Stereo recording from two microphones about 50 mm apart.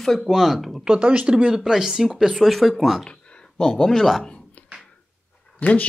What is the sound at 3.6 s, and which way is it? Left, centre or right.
Speech, centre.